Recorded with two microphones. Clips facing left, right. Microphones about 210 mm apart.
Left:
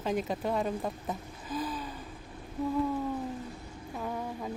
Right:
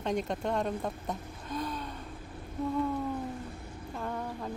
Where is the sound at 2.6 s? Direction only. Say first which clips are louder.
Left 1 dB; centre (ahead or behind).